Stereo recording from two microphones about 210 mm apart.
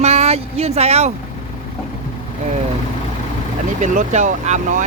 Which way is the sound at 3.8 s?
35° right (ahead or behind).